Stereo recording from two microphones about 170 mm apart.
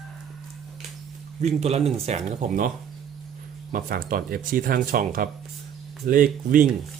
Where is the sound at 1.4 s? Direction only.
40° right (ahead or behind).